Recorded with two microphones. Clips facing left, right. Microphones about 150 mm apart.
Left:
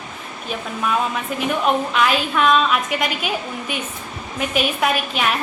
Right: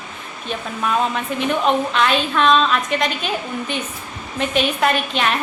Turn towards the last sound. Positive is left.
turn(degrees=5)  # may be behind; listen again after turning